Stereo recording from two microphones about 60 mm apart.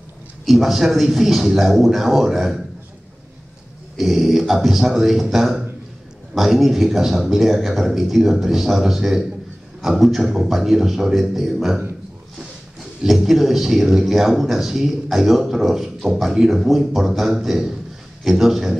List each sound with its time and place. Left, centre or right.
0.5 s speech: centre
3.9 s speech: centre
13.0 s speech: centre